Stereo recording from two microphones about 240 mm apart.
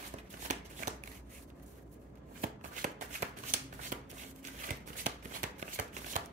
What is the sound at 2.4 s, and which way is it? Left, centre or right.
Shuffling cards, right.